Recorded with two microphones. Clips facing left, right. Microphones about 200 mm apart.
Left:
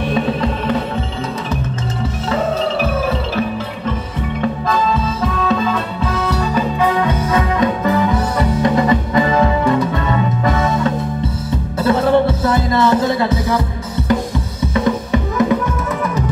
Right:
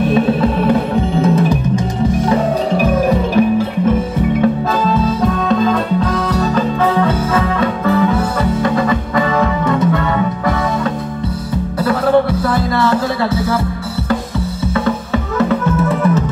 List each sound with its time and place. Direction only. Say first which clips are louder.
0.1 s music: right 5 dB; 5° right (ahead or behind)
2.8 s music: right 5 dB; 15° right (ahead or behind)
5.2 s music: right 3 dB; 5° left (ahead or behind)